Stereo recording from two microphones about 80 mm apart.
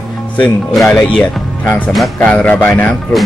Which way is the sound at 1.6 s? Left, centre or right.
Left.